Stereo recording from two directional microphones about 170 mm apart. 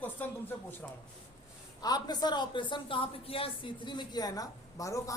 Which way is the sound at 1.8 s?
25° left (ahead or behind).